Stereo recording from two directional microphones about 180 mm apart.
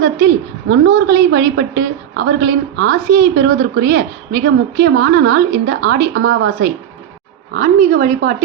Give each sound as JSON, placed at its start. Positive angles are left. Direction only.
{"t": 0.0, "sound": "a woman's voice", "side_deg": -65}
{"t": 7.5, "sound": "speech", "side_deg": -50}